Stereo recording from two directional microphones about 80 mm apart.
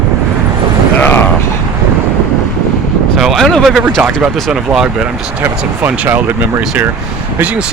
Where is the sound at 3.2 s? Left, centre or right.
Centre.